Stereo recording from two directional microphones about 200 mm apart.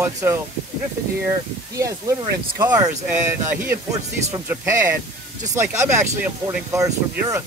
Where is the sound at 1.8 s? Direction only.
15° right (ahead or behind).